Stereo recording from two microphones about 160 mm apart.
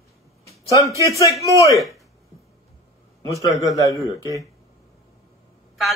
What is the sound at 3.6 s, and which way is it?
Speech, 20° left (ahead or behind).